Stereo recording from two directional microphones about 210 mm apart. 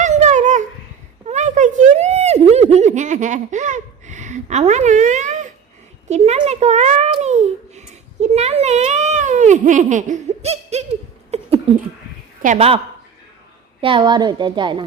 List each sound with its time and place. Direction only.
0.0 s dog: 35° right (ahead or behind)
1.3 s a sound: 35° right (ahead or behind)
6.1 s babbling: 35° right (ahead or behind)
11.3 s a sound: 30° right (ahead or behind)
12.5 s a woman's voice: 30° right (ahead or behind)
13.8 s a woman's voice: 20° right (ahead or behind)